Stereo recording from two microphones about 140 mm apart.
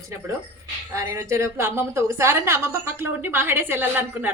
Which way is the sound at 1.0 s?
20° right (ahead or behind).